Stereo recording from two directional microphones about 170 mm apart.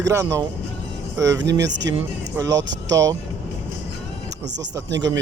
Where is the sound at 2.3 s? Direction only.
20° right (ahead or behind).